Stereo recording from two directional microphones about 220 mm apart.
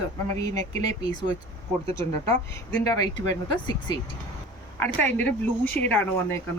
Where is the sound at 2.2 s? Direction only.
25° right (ahead or behind).